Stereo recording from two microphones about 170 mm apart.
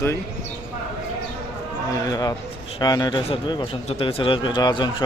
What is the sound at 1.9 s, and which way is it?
A man's voice, 20° left (ahead or behind).